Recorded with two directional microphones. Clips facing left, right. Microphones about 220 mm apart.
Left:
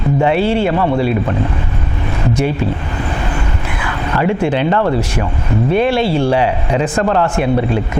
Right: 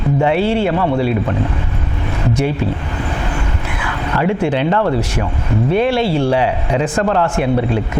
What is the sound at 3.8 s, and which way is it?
Speech, 20° left (ahead or behind).